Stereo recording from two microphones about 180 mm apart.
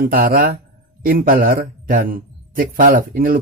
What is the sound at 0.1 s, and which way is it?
Speech, 50° right (ahead or behind).